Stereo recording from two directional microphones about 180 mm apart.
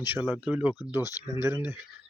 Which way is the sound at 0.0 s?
10° right (ahead or behind).